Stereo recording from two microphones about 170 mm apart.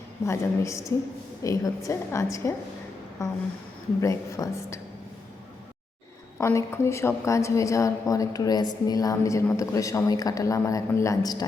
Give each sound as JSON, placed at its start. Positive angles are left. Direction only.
{"t": 0.3, "sound": "a woman's voice", "side_deg": 15}
{"t": 4.0, "sound": "a woman's voice", "side_deg": 20}
{"t": 6.4, "sound": "a woman's voice", "side_deg": 15}